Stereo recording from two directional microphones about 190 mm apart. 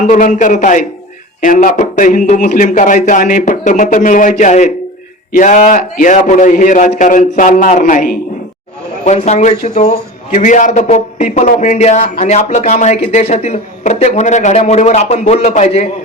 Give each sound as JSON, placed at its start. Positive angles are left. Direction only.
{"t": 0.0, "sound": "a man's voice", "side_deg": 40}
{"t": 9.0, "sound": "a man's voice", "side_deg": 35}